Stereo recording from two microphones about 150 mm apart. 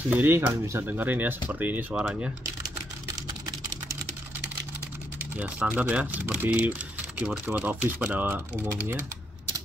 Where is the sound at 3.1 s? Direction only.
25° right (ahead or behind).